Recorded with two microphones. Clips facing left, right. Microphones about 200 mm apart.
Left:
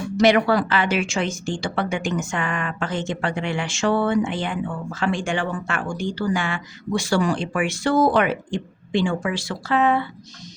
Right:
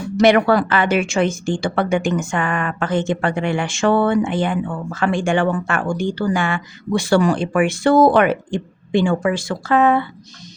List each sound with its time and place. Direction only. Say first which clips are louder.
0.2 s a woman's voice: right 4 dB; 55° right (ahead or behind)